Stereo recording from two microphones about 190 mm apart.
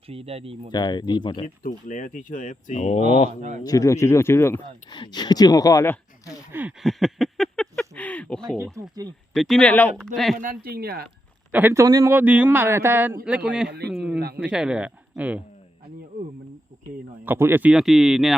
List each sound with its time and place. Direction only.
0.1 s speech: 30° right (ahead or behind)
0.7 s speech: 20° left (ahead or behind)
1.6 s speech: 45° left (ahead or behind)
3.6 s speech: 20° left (ahead or behind)
6.5 s a sound: 10° right (ahead or behind)
8.5 s speech: 10° right (ahead or behind)
9.3 s speech: centre (ahead or behind)
10.3 s speech: 45° right (ahead or behind)
11.5 s speech: 10° right (ahead or behind)
17.2 s speech: 10° right (ahead or behind)